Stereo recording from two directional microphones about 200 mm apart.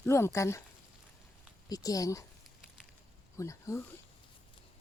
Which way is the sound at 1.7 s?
20° left (ahead or behind).